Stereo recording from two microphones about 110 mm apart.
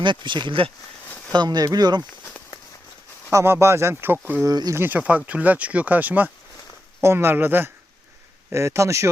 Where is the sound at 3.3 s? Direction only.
25° right (ahead or behind).